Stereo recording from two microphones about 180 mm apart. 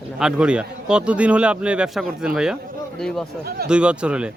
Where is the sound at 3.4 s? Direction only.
60° right (ahead or behind).